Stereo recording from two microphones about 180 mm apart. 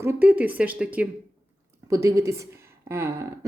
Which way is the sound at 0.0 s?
10° right (ahead or behind).